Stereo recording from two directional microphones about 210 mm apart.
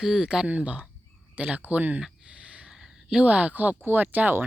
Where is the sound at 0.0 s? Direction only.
5° right (ahead or behind).